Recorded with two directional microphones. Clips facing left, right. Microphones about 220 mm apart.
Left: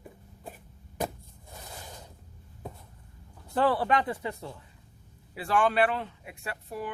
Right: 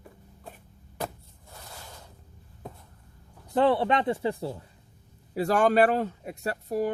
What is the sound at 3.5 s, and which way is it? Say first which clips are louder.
Speech: right 3 dB; 25° right (ahead or behind).